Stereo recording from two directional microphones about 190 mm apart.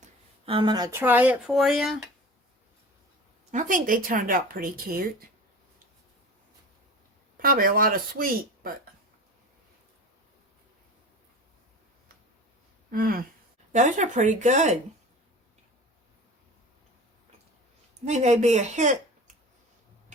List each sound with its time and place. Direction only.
0.0 s speech: 30° right (ahead or behind); by 2.0 s centre (ahead or behind)
3.5 s a woman's voice: 40° right (ahead or behind)
7.3 s a woman's voice: 50° right (ahead or behind)
12.9 s a woman's voice: 50° right (ahead or behind)
13.7 s speech: 40° right (ahead or behind)
18.0 s speech: 35° right (ahead or behind)